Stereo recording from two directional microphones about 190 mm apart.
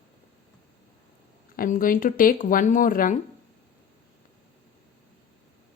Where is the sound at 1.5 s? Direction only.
50° left (ahead or behind).